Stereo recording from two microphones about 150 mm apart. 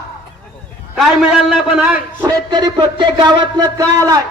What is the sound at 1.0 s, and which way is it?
A man's voice, centre (ahead or behind).